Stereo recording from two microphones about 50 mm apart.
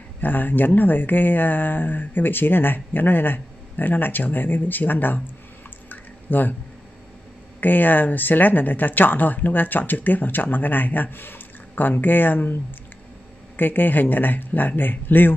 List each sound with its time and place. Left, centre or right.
0.2 s speech: left
5.9 s a sound: left
7.6 s speech: left
13.6 s speech: left